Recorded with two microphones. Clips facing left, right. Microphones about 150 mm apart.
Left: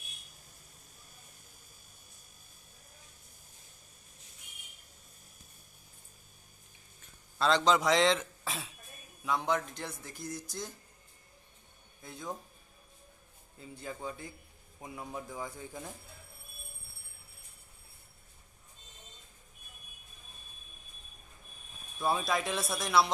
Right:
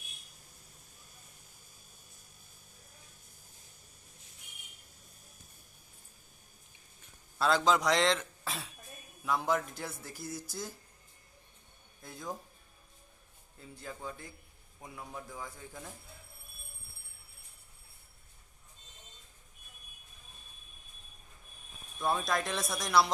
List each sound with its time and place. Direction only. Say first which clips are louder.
7.3 s a man's voice: left 1 dB; 5° right (ahead or behind)
12.0 s speech: even; centre (ahead or behind)
13.6 s a man's voice: left 3 dB; centre (ahead or behind)
21.9 s speech: left 1 dB; 5° left (ahead or behind)